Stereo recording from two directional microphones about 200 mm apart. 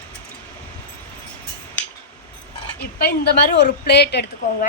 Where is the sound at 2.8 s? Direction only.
50° left (ahead or behind).